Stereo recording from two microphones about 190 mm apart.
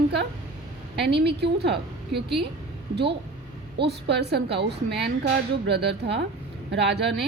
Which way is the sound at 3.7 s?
60° right (ahead or behind).